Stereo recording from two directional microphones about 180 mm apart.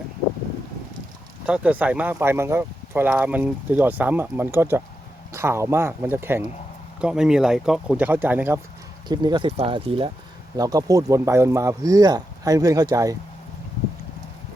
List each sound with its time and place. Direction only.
1.5 s speech: 5° right (ahead or behind)
9.0 s speech: 25° right (ahead or behind)
10.6 s speech: 20° right (ahead or behind)